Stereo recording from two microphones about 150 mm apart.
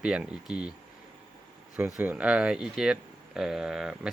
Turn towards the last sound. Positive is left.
turn(degrees=-5)  # may be behind; listen again after turning